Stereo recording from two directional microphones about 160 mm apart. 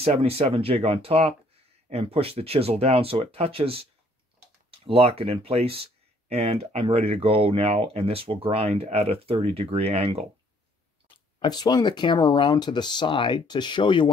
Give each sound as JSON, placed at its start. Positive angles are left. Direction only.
{"t": 0.0, "sound": "speech", "side_deg": -40}
{"t": 11.3, "sound": "speech", "side_deg": 25}